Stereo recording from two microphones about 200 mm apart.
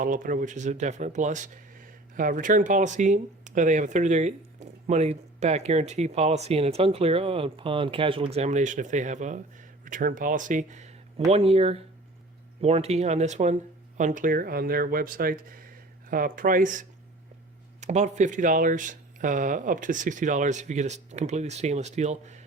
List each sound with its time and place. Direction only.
0.0 s speech: 40° right (ahead or behind)